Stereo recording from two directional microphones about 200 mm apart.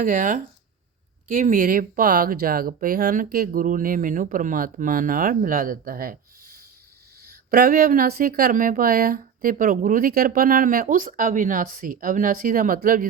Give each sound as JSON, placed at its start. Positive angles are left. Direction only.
{"t": 0.0, "sound": "speech", "side_deg": -40}